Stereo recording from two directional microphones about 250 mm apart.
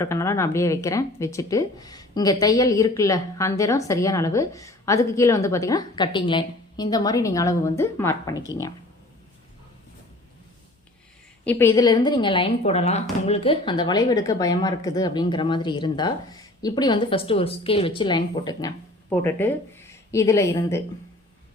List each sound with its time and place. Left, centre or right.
0.0 s speech: centre
11.4 s speech: centre